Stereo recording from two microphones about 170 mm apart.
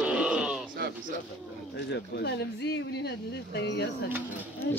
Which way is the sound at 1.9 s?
80° left.